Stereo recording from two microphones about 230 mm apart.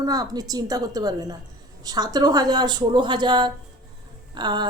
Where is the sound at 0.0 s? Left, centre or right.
Centre.